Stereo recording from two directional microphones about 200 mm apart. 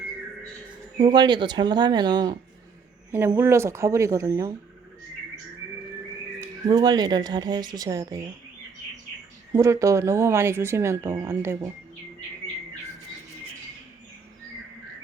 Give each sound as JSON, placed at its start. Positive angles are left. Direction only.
{"t": 0.9, "sound": "speech", "side_deg": -20}
{"t": 6.7, "sound": "speech", "side_deg": -20}
{"t": 9.5, "sound": "speech", "side_deg": -15}